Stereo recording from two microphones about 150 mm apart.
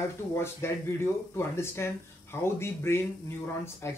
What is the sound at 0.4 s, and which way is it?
Speech, 15° left (ahead or behind).